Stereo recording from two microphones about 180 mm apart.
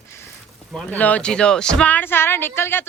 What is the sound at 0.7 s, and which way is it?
Speech, 5° left (ahead or behind).